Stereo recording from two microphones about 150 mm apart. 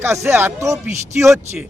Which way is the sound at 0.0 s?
15° right (ahead or behind).